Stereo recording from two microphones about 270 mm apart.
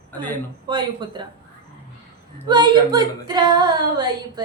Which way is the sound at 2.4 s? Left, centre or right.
Centre.